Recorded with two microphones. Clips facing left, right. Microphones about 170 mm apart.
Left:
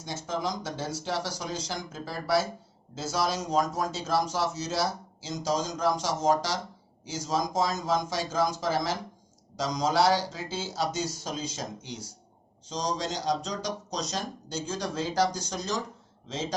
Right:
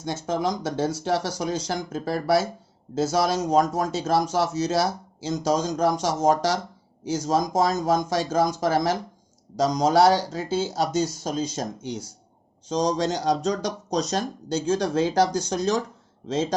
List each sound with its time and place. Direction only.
0.0 s speech: 50° right (ahead or behind)
2.9 s speech: 50° right (ahead or behind); by 4.8 s 70° right (ahead or behind)
5.2 s speech: 50° right (ahead or behind)